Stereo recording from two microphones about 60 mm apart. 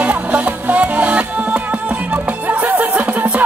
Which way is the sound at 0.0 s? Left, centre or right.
Right.